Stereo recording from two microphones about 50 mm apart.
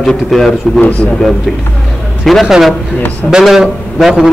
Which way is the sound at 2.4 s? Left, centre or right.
Centre.